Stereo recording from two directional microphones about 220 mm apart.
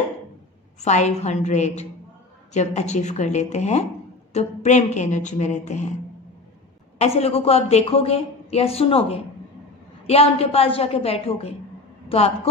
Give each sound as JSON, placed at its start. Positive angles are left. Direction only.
{"t": 0.8, "sound": "a woman's voice", "side_deg": 30}
{"t": 7.0, "sound": "a woman's voice", "side_deg": 30}